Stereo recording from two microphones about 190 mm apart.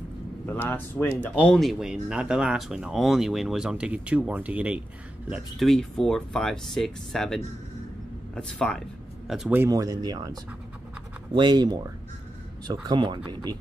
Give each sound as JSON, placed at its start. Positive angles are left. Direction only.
{"t": 0.5, "sound": "speech", "side_deg": 10}
{"t": 9.3, "sound": "speech", "side_deg": -5}
{"t": 11.3, "sound": "speech", "side_deg": -20}